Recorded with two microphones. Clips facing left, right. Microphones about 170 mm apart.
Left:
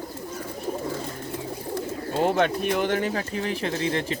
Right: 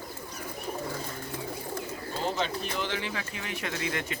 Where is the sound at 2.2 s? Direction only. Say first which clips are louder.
Left 9 dB; 60° left (ahead or behind); by 4.2 s 30° left (ahead or behind).